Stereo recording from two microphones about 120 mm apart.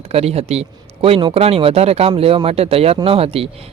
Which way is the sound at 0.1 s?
60° right (ahead or behind).